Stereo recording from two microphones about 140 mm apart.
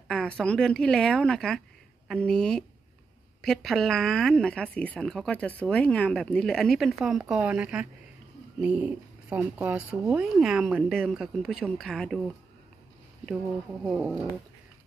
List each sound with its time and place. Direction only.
0.1 s speech: 5° left (ahead or behind)
13.8 s speech: 5° right (ahead or behind)